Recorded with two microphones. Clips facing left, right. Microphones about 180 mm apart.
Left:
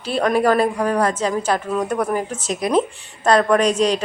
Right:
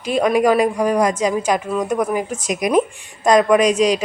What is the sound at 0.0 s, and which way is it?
Speech, 10° right (ahead or behind).